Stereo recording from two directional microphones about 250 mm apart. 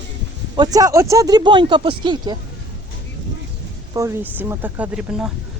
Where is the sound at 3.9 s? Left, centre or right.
Centre.